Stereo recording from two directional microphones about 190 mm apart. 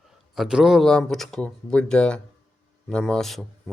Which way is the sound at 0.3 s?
5° right (ahead or behind).